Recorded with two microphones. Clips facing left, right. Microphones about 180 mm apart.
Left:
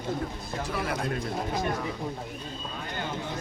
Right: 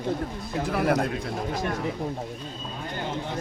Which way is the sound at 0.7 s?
55° right (ahead or behind).